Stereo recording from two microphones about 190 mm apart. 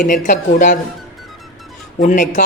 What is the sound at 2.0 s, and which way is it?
Speech, 40° left (ahead or behind).